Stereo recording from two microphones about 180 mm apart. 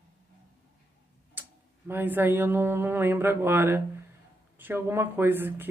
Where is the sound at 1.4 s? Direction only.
10° right (ahead or behind).